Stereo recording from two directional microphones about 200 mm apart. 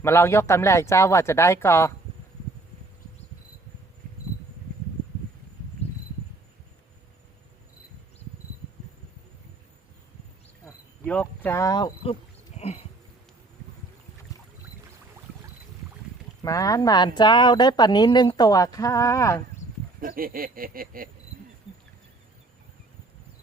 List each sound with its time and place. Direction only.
0.0 s speech: 15° left (ahead or behind)
11.0 s speech: 5° left (ahead or behind)
12.5 s a sound: 30° left (ahead or behind)
16.4 s speech: 15° left (ahead or behind)
20.0 s speech: 45° right (ahead or behind)